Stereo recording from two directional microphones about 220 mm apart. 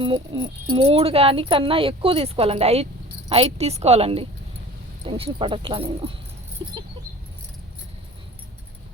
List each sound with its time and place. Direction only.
0.0 s speech: 20° right (ahead or behind)